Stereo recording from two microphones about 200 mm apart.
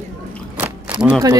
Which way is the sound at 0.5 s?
10° right (ahead or behind).